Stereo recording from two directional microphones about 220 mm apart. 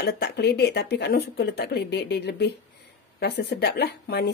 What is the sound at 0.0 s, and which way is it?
Speech, 50° left (ahead or behind).